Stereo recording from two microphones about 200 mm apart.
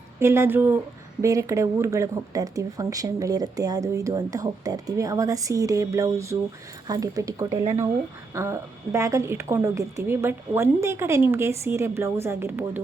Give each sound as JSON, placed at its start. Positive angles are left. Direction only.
{"t": 0.2, "sound": "speech", "side_deg": -10}